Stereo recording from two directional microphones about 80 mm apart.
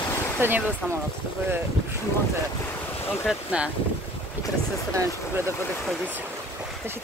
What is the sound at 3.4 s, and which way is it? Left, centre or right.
Speech, centre.